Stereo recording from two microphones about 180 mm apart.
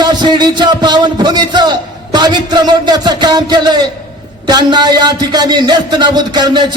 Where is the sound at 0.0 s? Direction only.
25° right (ahead or behind).